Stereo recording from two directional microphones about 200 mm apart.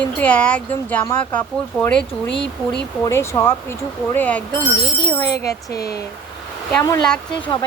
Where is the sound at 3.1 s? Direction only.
15° left (ahead or behind).